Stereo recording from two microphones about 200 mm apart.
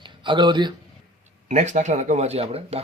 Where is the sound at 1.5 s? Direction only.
35° right (ahead or behind).